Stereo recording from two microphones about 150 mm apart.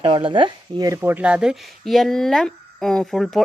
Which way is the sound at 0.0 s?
35° right (ahead or behind).